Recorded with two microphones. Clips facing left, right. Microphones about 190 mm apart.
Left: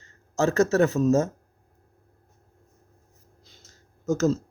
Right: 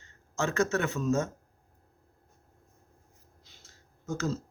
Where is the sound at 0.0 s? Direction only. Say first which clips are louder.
Left 8 dB; 35° left (ahead or behind).